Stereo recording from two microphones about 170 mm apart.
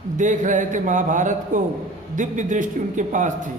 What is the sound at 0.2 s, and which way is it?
A man's voice, 50° right (ahead or behind).